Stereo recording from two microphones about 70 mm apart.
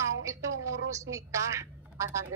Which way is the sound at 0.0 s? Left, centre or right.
Right.